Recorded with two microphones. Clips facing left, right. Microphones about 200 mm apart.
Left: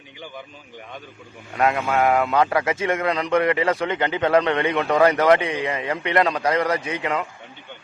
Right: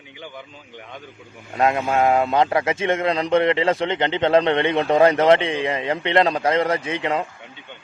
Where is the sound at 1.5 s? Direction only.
25° right (ahead or behind).